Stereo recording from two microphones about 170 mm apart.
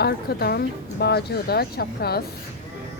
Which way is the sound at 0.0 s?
70° left (ahead or behind).